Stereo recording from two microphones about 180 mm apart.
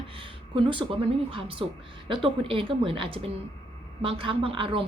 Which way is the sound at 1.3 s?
30° right (ahead or behind).